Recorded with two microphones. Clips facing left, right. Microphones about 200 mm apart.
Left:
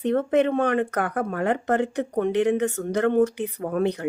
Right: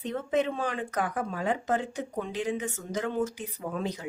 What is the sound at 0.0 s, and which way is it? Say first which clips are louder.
Speech: left 8 dB; 60° left (ahead or behind).